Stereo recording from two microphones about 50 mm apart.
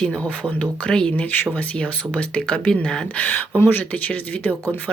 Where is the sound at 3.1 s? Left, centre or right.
Left.